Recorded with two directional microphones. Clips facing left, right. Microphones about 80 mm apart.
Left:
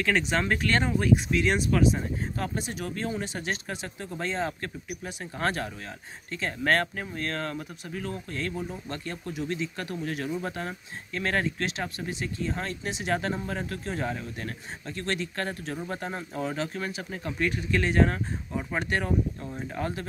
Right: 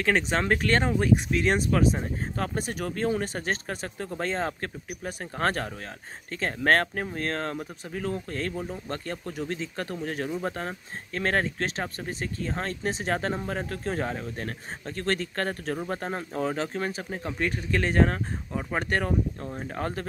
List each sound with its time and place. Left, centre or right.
0.0 s speech: right